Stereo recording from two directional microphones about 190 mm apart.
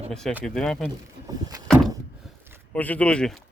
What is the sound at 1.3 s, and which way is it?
Vehicle, 20° right (ahead or behind).